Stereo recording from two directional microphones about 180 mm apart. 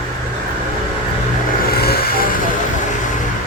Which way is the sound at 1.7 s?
60° left (ahead or behind).